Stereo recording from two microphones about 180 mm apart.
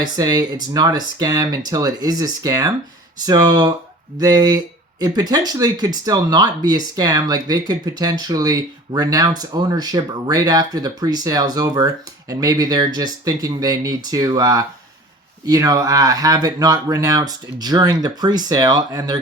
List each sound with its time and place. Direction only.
0.0 s speech: 20° right (ahead or behind)